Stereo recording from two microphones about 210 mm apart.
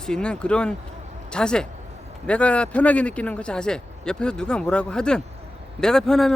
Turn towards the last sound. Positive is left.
turn(degrees=0)  # may be behind; listen again after turning